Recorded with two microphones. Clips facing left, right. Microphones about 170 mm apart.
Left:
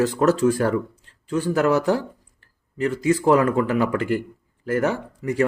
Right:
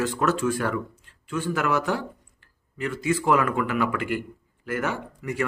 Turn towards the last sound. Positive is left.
turn(degrees=35)  # may be behind; listen again after turning